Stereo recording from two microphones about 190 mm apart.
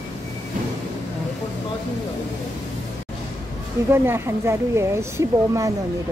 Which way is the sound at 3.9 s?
10° right (ahead or behind).